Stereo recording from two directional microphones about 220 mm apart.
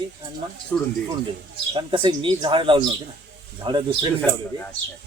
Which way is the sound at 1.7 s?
25° right (ahead or behind).